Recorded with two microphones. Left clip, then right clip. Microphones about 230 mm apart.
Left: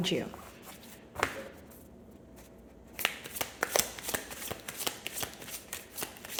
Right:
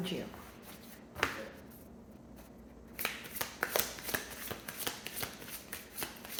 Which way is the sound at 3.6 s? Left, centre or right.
Left.